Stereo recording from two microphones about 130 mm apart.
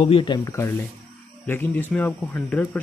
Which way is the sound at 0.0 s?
40° left (ahead or behind).